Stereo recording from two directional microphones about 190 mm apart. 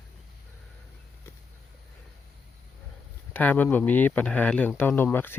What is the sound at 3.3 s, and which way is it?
Speech, 10° left (ahead or behind).